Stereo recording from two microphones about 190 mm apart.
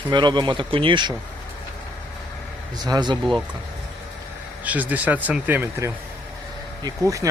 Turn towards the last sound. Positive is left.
turn(degrees=-15)  # may be behind; listen again after turning